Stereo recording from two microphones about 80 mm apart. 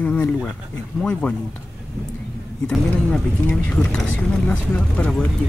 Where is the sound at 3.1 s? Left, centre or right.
Centre.